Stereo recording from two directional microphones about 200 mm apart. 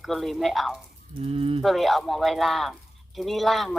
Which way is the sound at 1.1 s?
30° right (ahead or behind).